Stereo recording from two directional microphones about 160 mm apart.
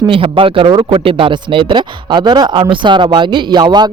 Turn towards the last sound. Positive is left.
turn(degrees=-25)  # may be behind; listen again after turning